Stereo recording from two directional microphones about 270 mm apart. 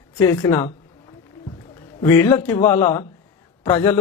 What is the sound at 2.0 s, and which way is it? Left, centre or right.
A man's voice, centre.